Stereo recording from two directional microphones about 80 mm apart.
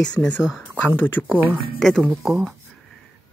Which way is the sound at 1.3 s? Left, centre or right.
Right.